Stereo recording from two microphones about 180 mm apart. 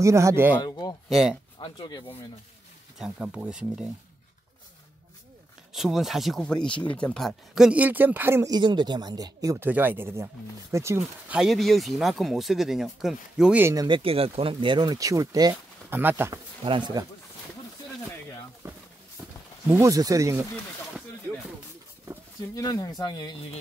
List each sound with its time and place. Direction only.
0.0 s speech: 15° right (ahead or behind)
0.6 s a sound: 20° left (ahead or behind)
1.0 s speech: centre (ahead or behind)
1.6 s speech: 25° left (ahead or behind)
3.0 s speech: 5° right (ahead or behind)
5.7 s speech: centre (ahead or behind)
11.0 s speech: 5° right (ahead or behind)
13.8 s speech: 30° right (ahead or behind); by 16.3 s 10° right (ahead or behind)
16.6 s speech: 25° right (ahead or behind)
19.7 s speech: 15° right (ahead or behind)
22.5 s speech: 20° left (ahead or behind)